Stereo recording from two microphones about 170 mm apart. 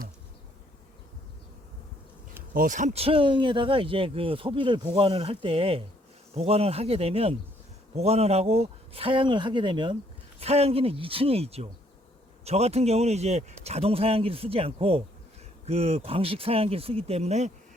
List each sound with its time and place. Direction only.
2.5 s speech: 50° right (ahead or behind)